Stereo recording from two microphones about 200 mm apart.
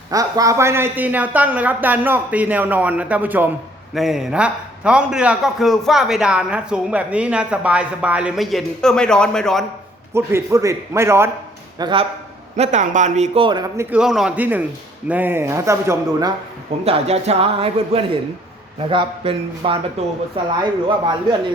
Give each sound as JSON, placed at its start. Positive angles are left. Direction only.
{"t": 0.1, "sound": "a man's voice", "side_deg": -15}
{"t": 10.2, "sound": "speech", "side_deg": -15}
{"t": 11.8, "sound": "a man's voice", "side_deg": -25}
{"t": 12.5, "sound": "a man's voice", "side_deg": -35}
{"t": 13.9, "sound": "speech", "side_deg": 0}
{"t": 16.8, "sound": "a man's voice", "side_deg": -30}